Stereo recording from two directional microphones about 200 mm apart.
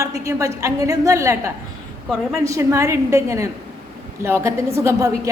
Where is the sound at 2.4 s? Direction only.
15° right (ahead or behind).